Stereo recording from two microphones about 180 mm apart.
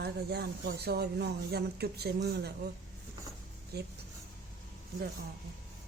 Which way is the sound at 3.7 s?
60° right (ahead or behind).